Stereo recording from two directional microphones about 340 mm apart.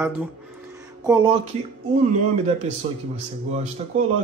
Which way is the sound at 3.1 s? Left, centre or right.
Centre.